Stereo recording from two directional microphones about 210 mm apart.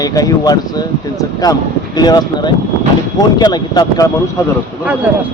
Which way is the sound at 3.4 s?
20° left (ahead or behind).